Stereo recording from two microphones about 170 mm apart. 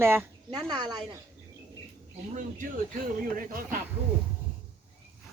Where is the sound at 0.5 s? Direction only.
25° right (ahead or behind).